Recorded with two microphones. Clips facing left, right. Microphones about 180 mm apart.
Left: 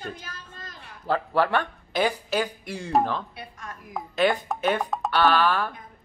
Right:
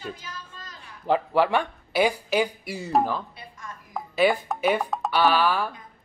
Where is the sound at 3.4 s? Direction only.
65° left (ahead or behind).